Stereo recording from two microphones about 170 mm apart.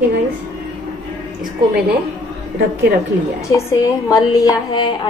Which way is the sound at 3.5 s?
20° left (ahead or behind).